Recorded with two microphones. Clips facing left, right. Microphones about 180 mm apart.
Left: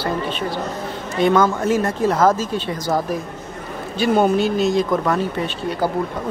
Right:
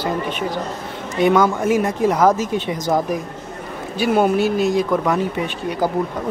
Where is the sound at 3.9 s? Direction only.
10° right (ahead or behind).